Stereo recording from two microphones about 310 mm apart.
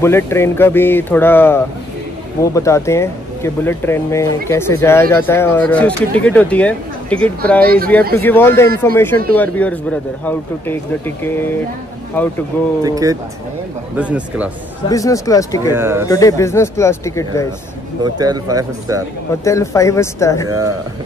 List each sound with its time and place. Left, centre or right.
0.0 s speech: centre
7.6 s speech: right
8.2 s speech: centre
12.8 s speech: centre
14.9 s speech: centre
15.7 s speech: centre
16.1 s speech: centre
18.2 s speech: centre
19.4 s speech: centre